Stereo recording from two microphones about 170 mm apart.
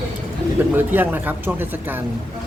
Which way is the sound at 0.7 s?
10° right (ahead or behind).